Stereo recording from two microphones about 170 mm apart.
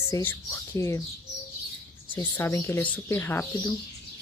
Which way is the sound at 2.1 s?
15° left (ahead or behind).